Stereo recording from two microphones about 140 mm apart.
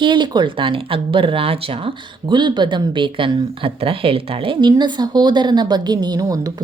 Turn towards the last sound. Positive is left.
turn(degrees=-25)  # may be behind; listen again after turning